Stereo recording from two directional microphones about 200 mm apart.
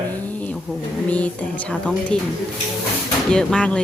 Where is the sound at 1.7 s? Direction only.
5° left (ahead or behind).